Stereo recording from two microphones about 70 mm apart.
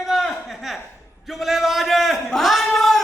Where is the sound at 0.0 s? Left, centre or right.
Centre.